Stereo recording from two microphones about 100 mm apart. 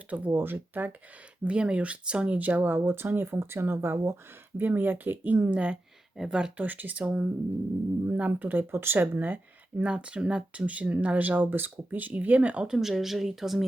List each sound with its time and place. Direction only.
0.3 s speech: 20° right (ahead or behind); by 13.7 s 5° right (ahead or behind)